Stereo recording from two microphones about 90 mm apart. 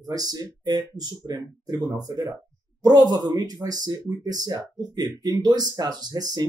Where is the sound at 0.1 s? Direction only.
45° right (ahead or behind).